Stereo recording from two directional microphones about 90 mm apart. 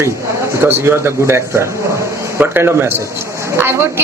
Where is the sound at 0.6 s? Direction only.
25° right (ahead or behind).